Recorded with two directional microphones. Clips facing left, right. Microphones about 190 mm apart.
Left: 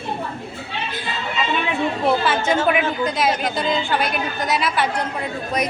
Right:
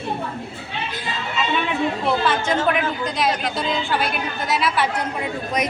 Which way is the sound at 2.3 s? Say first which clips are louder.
Left 1 dB; 5° left (ahead or behind).